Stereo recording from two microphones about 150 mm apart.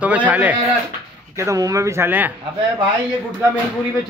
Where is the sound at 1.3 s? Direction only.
20° right (ahead or behind).